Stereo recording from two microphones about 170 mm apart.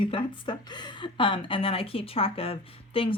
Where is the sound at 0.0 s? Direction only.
30° left (ahead or behind).